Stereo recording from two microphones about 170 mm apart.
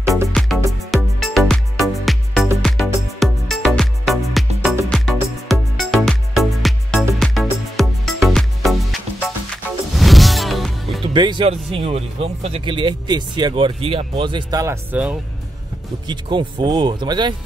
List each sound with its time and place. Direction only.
0.3 s music: centre (ahead or behind)
11.1 s speech: 25° right (ahead or behind); by 15.1 s 10° right (ahead or behind)
16.1 s speech: 25° right (ahead or behind)